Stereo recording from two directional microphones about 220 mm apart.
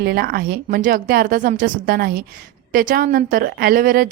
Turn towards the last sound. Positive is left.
turn(degrees=-40)  # may be behind; listen again after turning